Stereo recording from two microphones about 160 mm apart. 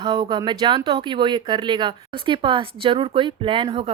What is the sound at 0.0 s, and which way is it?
Speech, 25° right (ahead or behind).